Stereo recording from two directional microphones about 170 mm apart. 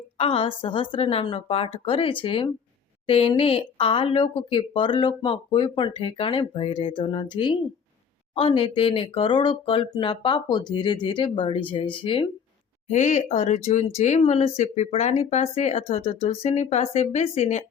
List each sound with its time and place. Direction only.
0.2 s speech: 35° left (ahead or behind)
12.9 s speech: 45° left (ahead or behind)